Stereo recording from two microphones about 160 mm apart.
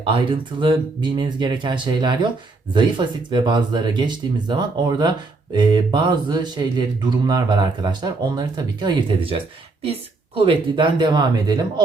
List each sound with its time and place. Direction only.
0.0 s speech: 30° right (ahead or behind)